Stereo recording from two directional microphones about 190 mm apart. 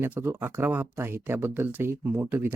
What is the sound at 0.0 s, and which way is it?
Speech, 10° right (ahead or behind).